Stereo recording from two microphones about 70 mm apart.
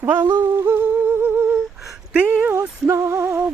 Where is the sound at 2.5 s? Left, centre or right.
Right.